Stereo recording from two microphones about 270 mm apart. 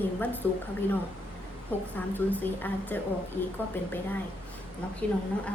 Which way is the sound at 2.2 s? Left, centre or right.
Centre.